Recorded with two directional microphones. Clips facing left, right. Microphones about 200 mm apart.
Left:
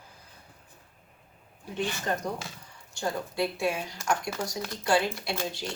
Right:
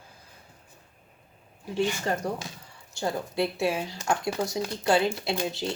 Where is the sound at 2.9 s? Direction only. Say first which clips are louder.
Right 2 dB; 25° right (ahead or behind).